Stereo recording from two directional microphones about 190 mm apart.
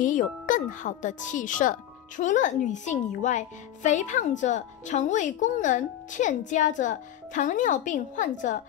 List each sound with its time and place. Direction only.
0.0 s speech: 45° left (ahead or behind)